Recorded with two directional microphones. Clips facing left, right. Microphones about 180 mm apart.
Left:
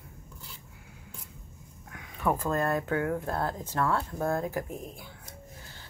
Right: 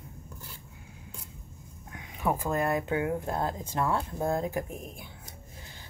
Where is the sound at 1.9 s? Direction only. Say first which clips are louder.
Left 1 dB; 15° right (ahead or behind).